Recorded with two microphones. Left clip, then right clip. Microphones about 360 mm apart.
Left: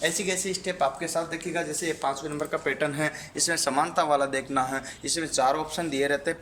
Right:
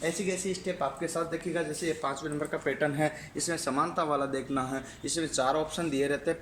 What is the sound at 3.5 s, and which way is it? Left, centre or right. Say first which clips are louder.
A man's voice: left 4 dB; left.